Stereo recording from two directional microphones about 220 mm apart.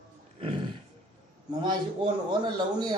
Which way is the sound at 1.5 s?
20° right (ahead or behind).